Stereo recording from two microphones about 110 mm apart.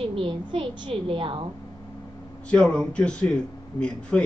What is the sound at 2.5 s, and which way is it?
Speech, 5° left (ahead or behind).